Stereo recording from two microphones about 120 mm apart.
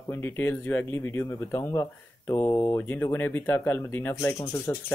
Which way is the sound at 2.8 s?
15° left (ahead or behind).